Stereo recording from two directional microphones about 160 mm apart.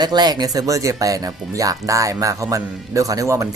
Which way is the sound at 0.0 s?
25° right (ahead or behind).